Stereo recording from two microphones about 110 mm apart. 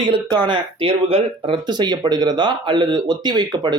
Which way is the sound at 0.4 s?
45° right (ahead or behind).